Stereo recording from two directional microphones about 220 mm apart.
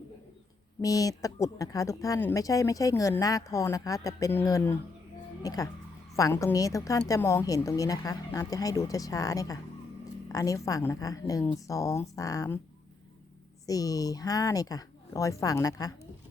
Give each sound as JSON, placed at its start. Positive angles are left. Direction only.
{"t": 0.8, "sound": "a woman's voice", "side_deg": 15}
{"t": 13.7, "sound": "a woman's voice", "side_deg": 15}